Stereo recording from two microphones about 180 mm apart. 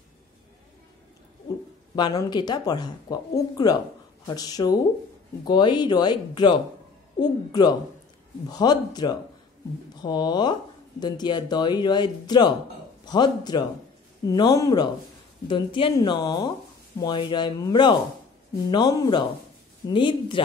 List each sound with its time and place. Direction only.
2.0 s speech: 25° left (ahead or behind)